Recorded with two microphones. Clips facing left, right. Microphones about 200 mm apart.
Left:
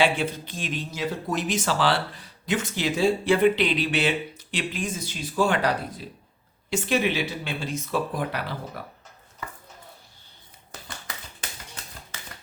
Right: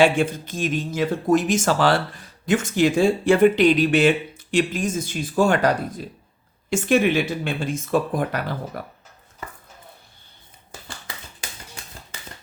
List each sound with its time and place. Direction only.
0.0 s speech: 45° right (ahead or behind)